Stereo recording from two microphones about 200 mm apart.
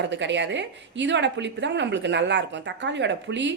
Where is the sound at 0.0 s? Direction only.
60° right (ahead or behind).